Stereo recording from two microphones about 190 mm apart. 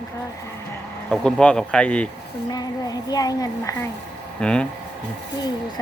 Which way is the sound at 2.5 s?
20° left (ahead or behind).